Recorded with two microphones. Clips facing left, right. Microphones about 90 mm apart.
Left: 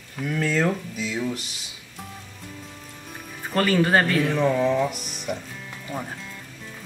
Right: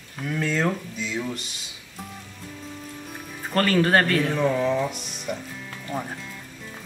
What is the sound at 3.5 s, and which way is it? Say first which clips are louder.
Speech: even; centre (ahead or behind).